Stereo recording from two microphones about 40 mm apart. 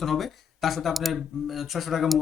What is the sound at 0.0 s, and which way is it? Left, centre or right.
Speech, centre.